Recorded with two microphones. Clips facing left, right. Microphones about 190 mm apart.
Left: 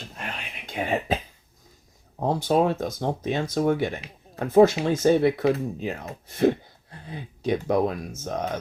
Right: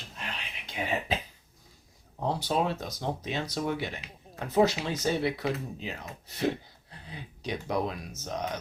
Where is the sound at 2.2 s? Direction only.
50° left (ahead or behind).